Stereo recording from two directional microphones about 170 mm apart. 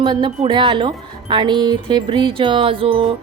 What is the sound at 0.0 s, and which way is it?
A woman's voice, 30° right (ahead or behind).